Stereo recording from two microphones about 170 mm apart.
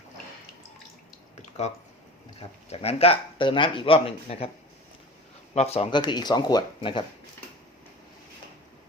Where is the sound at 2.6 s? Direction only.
35° left (ahead or behind).